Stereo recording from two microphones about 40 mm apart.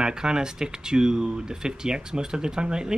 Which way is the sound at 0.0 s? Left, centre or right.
Centre.